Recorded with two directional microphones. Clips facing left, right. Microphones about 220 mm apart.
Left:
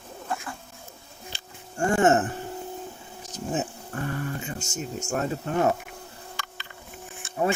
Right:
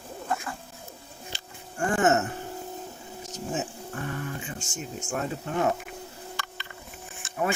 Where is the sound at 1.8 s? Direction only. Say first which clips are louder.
Left 3 dB; 30° left (ahead or behind).